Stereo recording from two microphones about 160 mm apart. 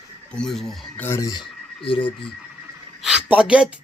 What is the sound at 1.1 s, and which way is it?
Speech, 20° left (ahead or behind).